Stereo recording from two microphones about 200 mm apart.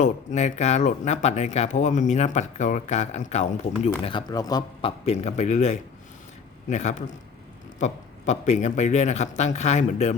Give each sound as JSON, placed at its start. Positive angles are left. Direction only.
{"t": 0.0, "sound": "speech", "side_deg": 35}
{"t": 4.0, "sound": "speech", "side_deg": 20}